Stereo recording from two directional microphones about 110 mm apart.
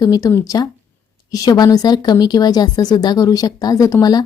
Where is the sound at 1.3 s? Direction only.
35° left (ahead or behind).